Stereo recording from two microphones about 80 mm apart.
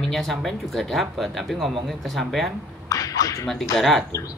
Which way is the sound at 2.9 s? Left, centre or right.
Left.